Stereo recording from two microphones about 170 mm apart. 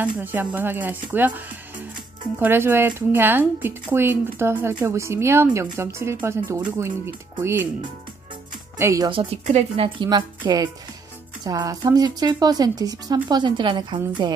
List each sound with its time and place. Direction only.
0.0 s speech: 10° right (ahead or behind)
8.7 s a woman's voice: 20° right (ahead or behind)
9.1 s speech: 35° right (ahead or behind)